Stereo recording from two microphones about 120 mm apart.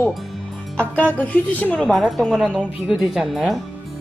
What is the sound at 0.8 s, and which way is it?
Speech, 15° left (ahead or behind).